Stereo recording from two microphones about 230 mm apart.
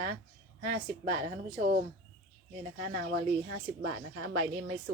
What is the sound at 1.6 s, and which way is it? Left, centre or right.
Speech, right.